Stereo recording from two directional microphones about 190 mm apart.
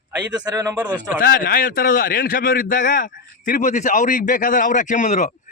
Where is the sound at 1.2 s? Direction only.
50° left (ahead or behind).